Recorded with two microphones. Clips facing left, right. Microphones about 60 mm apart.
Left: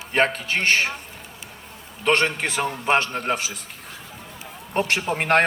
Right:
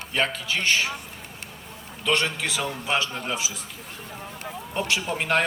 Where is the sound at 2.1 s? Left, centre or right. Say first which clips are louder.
Left 4 dB; left.